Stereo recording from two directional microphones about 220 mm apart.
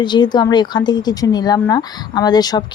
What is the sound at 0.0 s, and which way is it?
A woman's voice, 20° left (ahead or behind).